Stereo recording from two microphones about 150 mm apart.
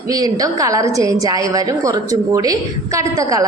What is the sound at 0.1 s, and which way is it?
A woman's voice, 25° right (ahead or behind).